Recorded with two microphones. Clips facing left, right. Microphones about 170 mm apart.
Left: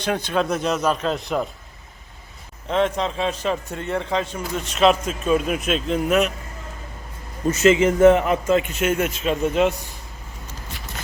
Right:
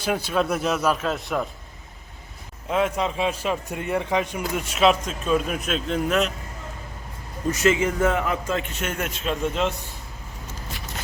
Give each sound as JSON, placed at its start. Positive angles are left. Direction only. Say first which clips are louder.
{"t": 0.0, "sound": "a man's voice", "louder": "left 1 dB", "side_deg": -5}
{"t": 2.6, "sound": "a man's voice", "louder": "left 2 dB", "side_deg": -5}
{"t": 7.5, "sound": "speech", "louder": "left 5 dB", "side_deg": 20}
{"t": 8.8, "sound": "a man's voice", "louder": "left 7 dB", "side_deg": 5}